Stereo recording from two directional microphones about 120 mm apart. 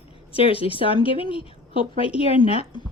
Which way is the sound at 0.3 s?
50° left (ahead or behind).